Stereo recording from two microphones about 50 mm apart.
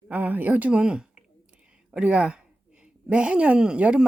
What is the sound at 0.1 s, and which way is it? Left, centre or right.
Speech, right.